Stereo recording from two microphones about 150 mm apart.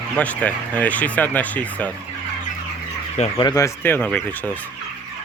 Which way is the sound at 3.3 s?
25° left (ahead or behind).